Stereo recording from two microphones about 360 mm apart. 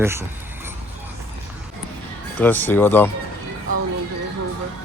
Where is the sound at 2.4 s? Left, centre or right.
Centre.